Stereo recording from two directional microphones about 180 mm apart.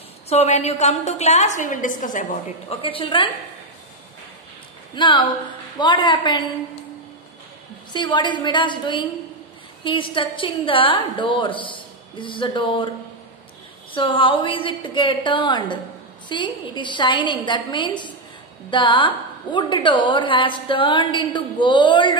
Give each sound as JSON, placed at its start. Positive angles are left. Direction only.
{"t": 0.3, "sound": "a woman's voice", "side_deg": 40}
{"t": 2.7, "sound": "a woman's voice", "side_deg": 30}
{"t": 4.9, "sound": "a woman's voice", "side_deg": 25}
{"t": 7.9, "sound": "a woman's voice", "side_deg": 25}
{"t": 13.9, "sound": "a woman's voice", "side_deg": 30}